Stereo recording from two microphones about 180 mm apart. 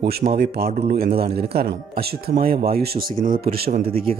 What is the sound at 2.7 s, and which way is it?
Speech, 55° right (ahead or behind).